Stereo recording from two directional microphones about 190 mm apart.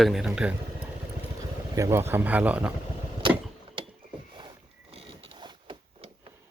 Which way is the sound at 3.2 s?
25° right (ahead or behind).